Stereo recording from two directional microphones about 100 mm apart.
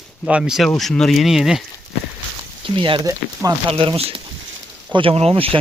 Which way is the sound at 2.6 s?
60° right (ahead or behind).